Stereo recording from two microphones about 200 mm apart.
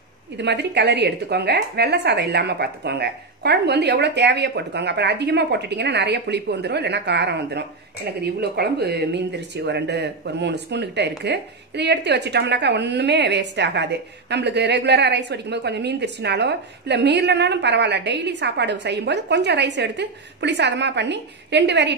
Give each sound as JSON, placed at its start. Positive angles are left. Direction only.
{"t": 0.4, "sound": "a woman's voice", "side_deg": -55}